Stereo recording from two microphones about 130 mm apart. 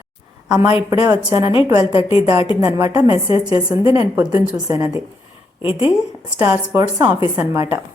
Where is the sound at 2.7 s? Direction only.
30° right (ahead or behind).